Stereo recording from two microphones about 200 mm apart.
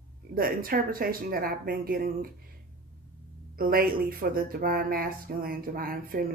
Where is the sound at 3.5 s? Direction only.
45° right (ahead or behind).